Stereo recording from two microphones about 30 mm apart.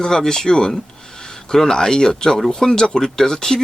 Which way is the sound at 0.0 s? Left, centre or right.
Left.